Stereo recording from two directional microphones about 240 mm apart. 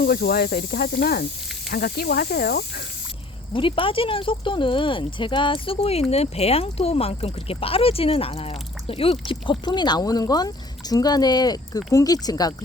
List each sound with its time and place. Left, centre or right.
0.0 s speech: left
3.5 s speech: left